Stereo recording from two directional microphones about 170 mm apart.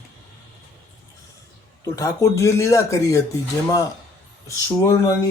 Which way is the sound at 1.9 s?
20° left (ahead or behind).